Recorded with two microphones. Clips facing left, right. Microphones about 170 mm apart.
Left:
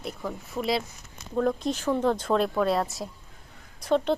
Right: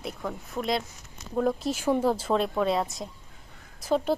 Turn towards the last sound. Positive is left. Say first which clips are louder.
# left 1 dB
turn(degrees=-5)  # may be behind; listen again after turning